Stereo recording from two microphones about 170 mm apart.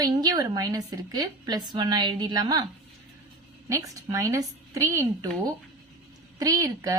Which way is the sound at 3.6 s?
20° right (ahead or behind).